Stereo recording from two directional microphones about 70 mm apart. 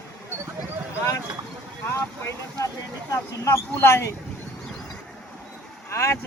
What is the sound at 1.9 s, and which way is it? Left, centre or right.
Speech, left.